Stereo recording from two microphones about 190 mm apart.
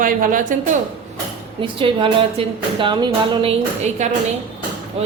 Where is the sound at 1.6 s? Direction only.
25° right (ahead or behind).